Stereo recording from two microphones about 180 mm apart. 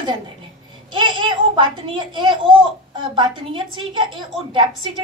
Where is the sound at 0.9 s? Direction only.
25° right (ahead or behind).